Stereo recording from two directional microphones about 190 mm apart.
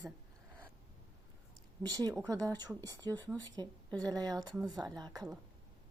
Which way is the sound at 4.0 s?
20° right (ahead or behind).